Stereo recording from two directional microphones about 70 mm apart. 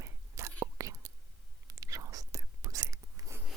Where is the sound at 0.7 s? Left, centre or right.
Right.